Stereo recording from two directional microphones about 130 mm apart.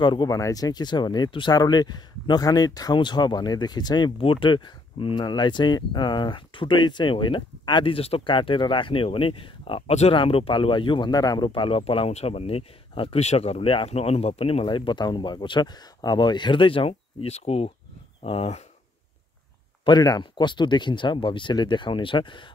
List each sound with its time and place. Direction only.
0.0 s speech: 35° left (ahead or behind)
14.8 s speech: 35° left (ahead or behind)
19.8 s speech: 30° left (ahead or behind)